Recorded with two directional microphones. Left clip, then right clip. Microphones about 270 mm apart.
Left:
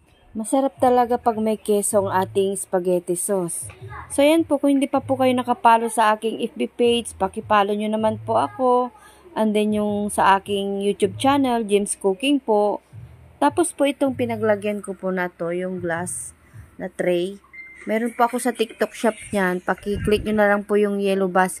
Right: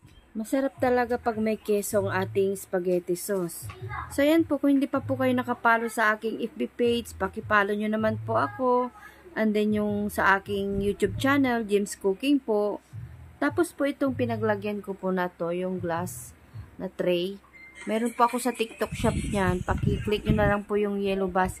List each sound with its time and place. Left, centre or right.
0.5 s speech: centre
4.5 s speech: centre